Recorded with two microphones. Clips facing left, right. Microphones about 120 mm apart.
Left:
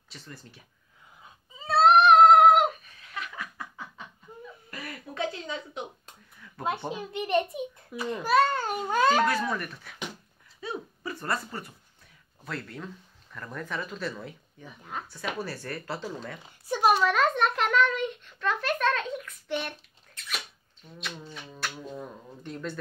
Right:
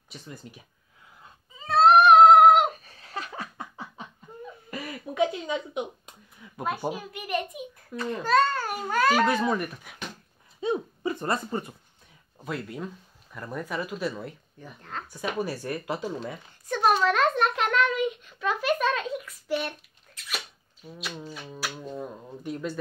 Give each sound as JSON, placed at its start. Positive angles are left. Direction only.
{"t": 0.1, "sound": "speech", "side_deg": -15}
{"t": 1.2, "sound": "cat", "side_deg": 0}
{"t": 2.7, "sound": "laughter", "side_deg": -35}
{"t": 4.6, "sound": "a sound", "side_deg": -15}
{"t": 6.9, "sound": "a child's voice", "side_deg": 25}
{"t": 7.9, "sound": "a child's voice", "side_deg": 10}
{"t": 9.2, "sound": "speech", "side_deg": -20}
{"t": 14.2, "sound": "a child's voice", "side_deg": 0}
{"t": 15.0, "sound": "speech", "side_deg": -15}
{"t": 16.4, "sound": "a child's voice", "side_deg": 10}
{"t": 20.2, "sound": "a sound", "side_deg": -5}